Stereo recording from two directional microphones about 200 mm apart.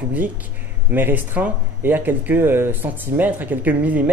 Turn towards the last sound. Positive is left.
turn(degrees=-10)  # may be behind; listen again after turning